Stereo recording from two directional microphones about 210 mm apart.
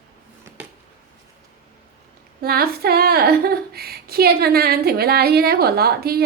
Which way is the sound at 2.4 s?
45° right (ahead or behind).